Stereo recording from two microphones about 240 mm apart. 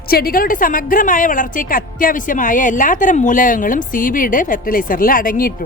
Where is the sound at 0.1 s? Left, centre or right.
Left.